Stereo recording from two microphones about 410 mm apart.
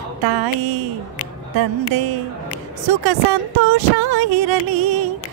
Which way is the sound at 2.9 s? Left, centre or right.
Right.